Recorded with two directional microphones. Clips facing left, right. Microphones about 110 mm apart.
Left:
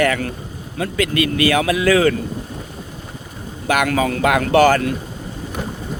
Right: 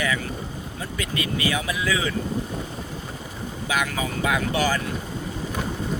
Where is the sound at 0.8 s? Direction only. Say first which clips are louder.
Left 11 dB; 80° left.